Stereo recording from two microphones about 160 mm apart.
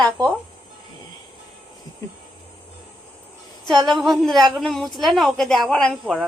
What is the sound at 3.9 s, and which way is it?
A woman's voice, centre (ahead or behind).